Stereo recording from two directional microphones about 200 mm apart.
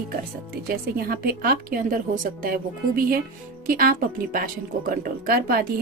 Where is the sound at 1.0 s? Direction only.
50° right (ahead or behind).